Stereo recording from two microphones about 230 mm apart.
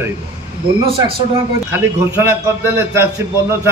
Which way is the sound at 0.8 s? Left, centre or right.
Right.